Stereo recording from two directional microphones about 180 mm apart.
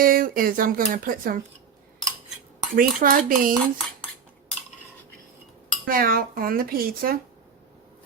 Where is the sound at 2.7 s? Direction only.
50° right (ahead or behind).